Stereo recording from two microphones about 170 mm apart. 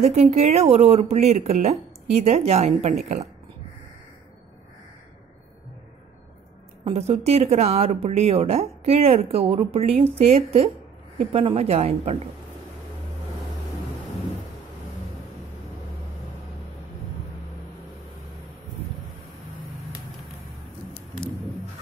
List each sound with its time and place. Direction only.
0.0 s speech: 40° right (ahead or behind)
6.8 s speech: 40° right (ahead or behind)